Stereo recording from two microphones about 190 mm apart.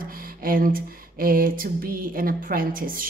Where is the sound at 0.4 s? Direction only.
50° right (ahead or behind).